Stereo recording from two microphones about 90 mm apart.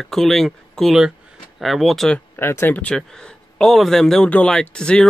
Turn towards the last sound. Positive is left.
turn(degrees=10)  # may be behind; listen again after turning